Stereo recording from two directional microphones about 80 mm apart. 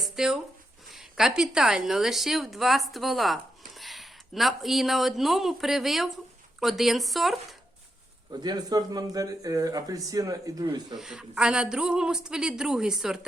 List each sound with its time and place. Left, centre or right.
0.0 s a sound: centre
0.9 s a woman's voice: centre
8.3 s speech: right
10.9 s a woman's voice: centre